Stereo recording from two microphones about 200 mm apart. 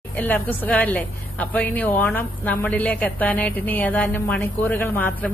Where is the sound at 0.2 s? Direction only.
10° left (ahead or behind).